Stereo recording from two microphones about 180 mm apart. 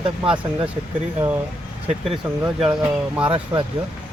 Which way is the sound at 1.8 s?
35° right (ahead or behind).